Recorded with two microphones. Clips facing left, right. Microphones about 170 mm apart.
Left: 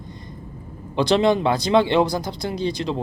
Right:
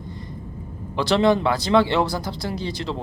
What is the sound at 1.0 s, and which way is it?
Speech, 20° left (ahead or behind).